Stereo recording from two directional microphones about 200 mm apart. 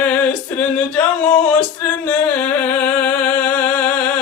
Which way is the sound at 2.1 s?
5° left (ahead or behind).